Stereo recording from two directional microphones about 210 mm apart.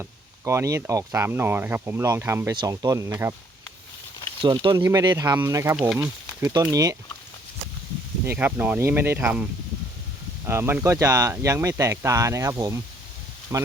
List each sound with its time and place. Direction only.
0.0 s speech: 15° right (ahead or behind)
4.4 s speech: 25° right (ahead or behind)
5.7 s speech: 5° right (ahead or behind)
8.2 s speech: 10° right (ahead or behind)